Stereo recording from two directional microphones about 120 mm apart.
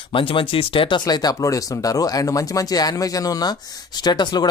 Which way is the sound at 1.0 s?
35° left (ahead or behind).